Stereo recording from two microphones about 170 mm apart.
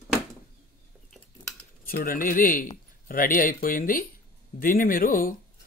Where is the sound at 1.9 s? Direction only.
55° left (ahead or behind).